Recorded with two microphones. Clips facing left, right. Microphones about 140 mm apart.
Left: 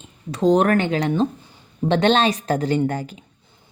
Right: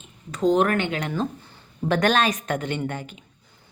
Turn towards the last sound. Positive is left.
turn(degrees=40)  # may be behind; listen again after turning